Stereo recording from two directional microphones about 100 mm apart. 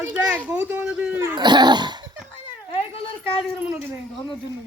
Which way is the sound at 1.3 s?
45° right (ahead or behind).